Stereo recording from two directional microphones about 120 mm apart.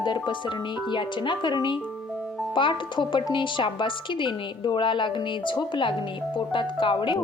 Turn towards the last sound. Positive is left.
turn(degrees=45)  # may be behind; listen again after turning